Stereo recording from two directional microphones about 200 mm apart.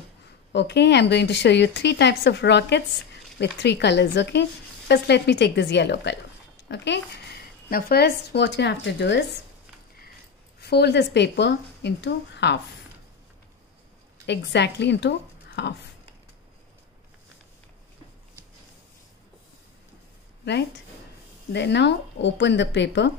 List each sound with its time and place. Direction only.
0.5 s speech: 60° left (ahead or behind)
7.7 s speech: 50° left (ahead or behind)
10.6 s speech: 55° left (ahead or behind)
14.2 s a woman's voice: 60° left (ahead or behind)
20.4 s speech: 60° left (ahead or behind)